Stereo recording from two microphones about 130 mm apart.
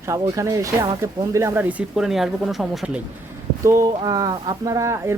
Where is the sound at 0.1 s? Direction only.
25° right (ahead or behind).